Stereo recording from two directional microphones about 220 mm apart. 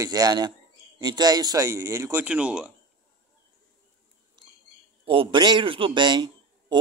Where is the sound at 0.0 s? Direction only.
15° right (ahead or behind).